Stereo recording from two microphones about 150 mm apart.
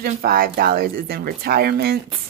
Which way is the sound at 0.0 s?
75° right (ahead or behind).